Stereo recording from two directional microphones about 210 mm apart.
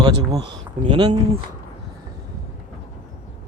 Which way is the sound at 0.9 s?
25° right (ahead or behind).